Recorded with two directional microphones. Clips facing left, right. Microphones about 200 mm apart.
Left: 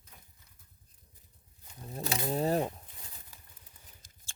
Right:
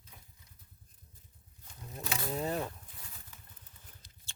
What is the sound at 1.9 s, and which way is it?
Wild animals, 30° left (ahead or behind).